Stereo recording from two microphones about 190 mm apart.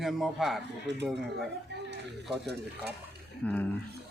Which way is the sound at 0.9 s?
65° right (ahead or behind).